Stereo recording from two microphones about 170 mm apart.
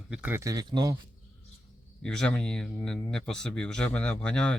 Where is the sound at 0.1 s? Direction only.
10° right (ahead or behind); by 0.9 s 25° right (ahead or behind).